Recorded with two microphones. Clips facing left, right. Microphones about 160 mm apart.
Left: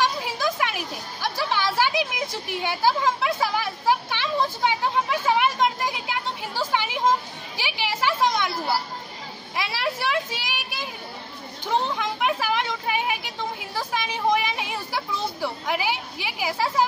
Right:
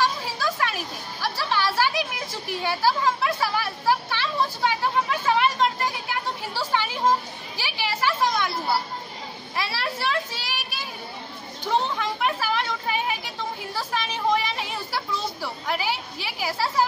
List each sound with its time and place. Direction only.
0.0 s speech: 15° left (ahead or behind)
9.6 s speech: 15° left (ahead or behind)
13.7 s a sound: 15° left (ahead or behind)
15.4 s speech: 15° left (ahead or behind)